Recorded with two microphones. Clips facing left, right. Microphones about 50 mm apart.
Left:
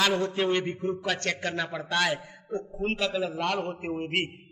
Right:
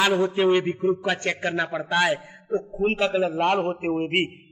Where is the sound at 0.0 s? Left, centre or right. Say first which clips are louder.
Right 5 dB; centre.